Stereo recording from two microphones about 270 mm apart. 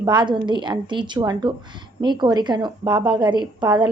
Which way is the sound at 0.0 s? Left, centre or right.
Centre.